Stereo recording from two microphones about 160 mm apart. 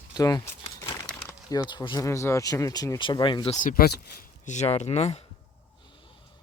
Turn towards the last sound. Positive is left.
turn(degrees=40)  # may be behind; listen again after turning